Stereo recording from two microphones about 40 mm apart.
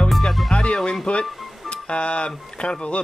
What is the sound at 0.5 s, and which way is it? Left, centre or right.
Speech, left.